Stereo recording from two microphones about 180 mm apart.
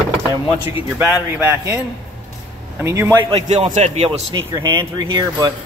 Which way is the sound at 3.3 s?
35° right (ahead or behind).